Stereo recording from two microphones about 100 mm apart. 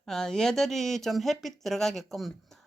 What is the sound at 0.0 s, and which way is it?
Speech, 5° left (ahead or behind).